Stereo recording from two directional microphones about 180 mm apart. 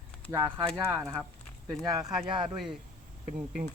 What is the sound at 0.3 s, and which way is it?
Speech, 15° right (ahead or behind).